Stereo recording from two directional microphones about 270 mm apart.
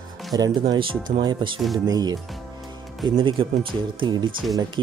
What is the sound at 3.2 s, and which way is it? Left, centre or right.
Speech, centre.